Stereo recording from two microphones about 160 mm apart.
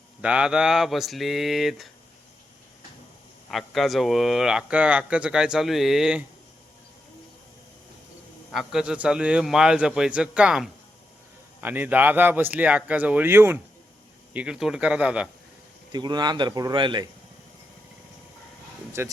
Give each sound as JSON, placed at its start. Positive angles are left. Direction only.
{"t": 0.2, "sound": "speech", "side_deg": -5}
{"t": 3.5, "sound": "speech", "side_deg": 0}
{"t": 8.5, "sound": "speech", "side_deg": -5}
{"t": 15.9, "sound": "speech", "side_deg": -25}
{"t": 19.0, "sound": "speech", "side_deg": -15}